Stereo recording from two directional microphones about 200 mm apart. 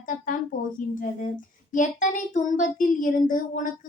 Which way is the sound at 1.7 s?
40° left (ahead or behind).